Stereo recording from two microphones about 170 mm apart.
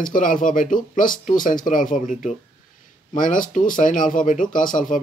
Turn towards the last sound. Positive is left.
turn(degrees=50)  # may be behind; listen again after turning